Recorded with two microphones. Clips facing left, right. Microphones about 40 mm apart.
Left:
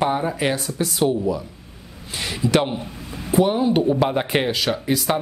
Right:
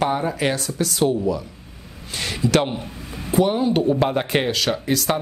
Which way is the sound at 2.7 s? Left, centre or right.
Centre.